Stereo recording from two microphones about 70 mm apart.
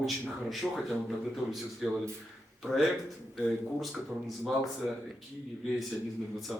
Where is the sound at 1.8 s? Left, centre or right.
Centre.